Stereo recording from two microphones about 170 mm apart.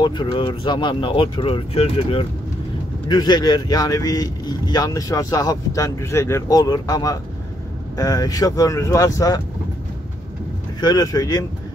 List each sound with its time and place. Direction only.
0.0 s speech: 30° left (ahead or behind)
10.8 s speech: 25° left (ahead or behind)